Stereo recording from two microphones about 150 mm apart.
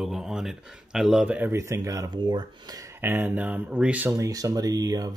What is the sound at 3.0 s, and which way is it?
Speech, 15° right (ahead or behind).